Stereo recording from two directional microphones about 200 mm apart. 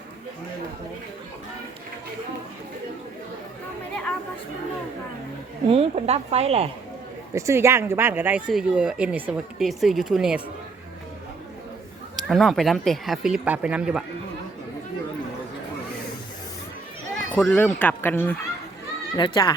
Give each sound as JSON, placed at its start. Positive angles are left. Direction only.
{"t": 5.6, "sound": "a woman's voice", "side_deg": -30}
{"t": 7.3, "sound": "speech", "side_deg": -15}
{"t": 12.3, "sound": "speech", "side_deg": 0}
{"t": 17.3, "sound": "speech", "side_deg": 5}
{"t": 19.1, "sound": "speech", "side_deg": 20}